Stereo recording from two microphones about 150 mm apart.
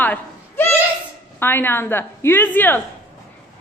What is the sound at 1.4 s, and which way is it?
A woman's voice, 15° left (ahead or behind).